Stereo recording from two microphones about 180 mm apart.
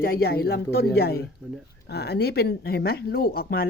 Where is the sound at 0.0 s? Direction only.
60° left (ahead or behind).